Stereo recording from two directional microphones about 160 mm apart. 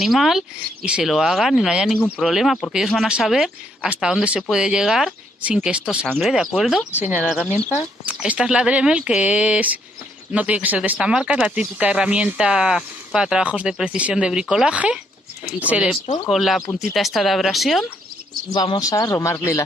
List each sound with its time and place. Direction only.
0.0 s speech: centre (ahead or behind)
18.5 s speech: 25° left (ahead or behind)